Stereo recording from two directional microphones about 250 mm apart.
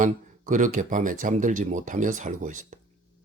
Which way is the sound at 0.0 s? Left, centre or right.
Right.